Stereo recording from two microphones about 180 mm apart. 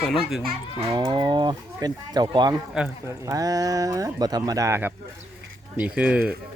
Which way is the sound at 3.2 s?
20° right (ahead or behind).